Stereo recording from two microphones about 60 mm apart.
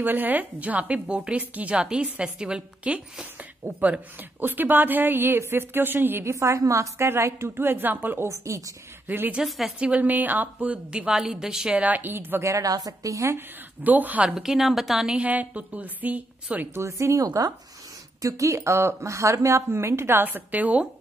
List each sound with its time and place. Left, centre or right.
0.0 s a woman's voice: right
6.3 s a woman's voice: right
8.3 s a woman's voice: right
9.0 s a woman's voice: right
9.4 s a woman's voice: centre
9.8 s a woman's voice: right
11.1 s a woman's voice: centre
11.7 s a woman's voice: right
12.4 s a woman's voice: right
13.8 s a woman's voice: right
14.2 s a woman's voice: centre
15.1 s a woman's voice: right
16.7 s a woman's voice: right
20.2 s a woman's voice: right